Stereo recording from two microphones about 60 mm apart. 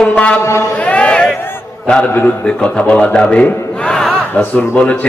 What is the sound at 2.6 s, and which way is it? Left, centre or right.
A man's voice, centre.